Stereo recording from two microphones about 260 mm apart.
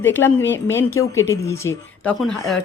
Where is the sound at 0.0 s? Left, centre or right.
Centre.